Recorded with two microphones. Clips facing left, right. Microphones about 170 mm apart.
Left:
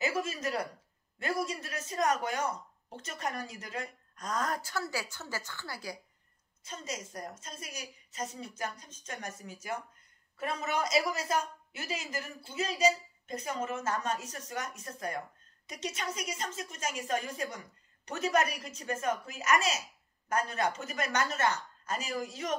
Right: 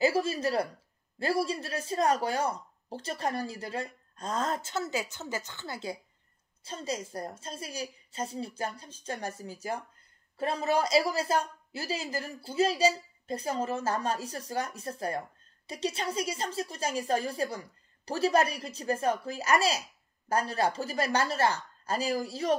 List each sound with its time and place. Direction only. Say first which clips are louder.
0.0 s speech: right 6 dB; 30° right (ahead or behind)